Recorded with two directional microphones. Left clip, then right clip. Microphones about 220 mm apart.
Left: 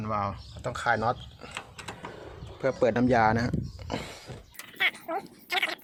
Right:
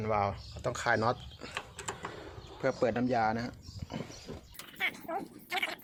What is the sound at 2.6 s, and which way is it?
Speech, 10° left (ahead or behind).